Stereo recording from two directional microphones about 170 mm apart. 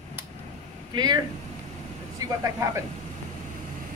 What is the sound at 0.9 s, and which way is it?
Speech, 25° right (ahead or behind).